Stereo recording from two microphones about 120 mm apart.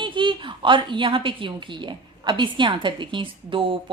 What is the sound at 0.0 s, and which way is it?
A woman's voice, 45° right (ahead or behind).